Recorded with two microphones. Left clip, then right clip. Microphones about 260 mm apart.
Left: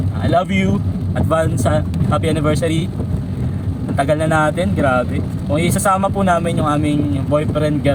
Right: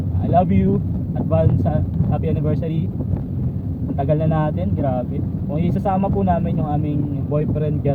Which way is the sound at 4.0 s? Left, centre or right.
Left.